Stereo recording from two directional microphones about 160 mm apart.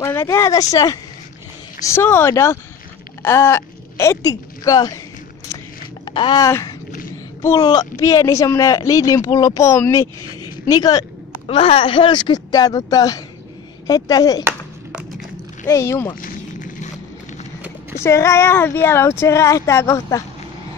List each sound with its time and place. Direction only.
0.0 s speech: 15° left (ahead or behind)
6.0 s speech: 30° left (ahead or behind)
11.4 s speech: 35° left (ahead or behind)
14.4 s a sound: 10° right (ahead or behind)
15.6 s speech: 15° left (ahead or behind)
16.2 s a sound: 55° left (ahead or behind)
17.9 s speech: 15° left (ahead or behind)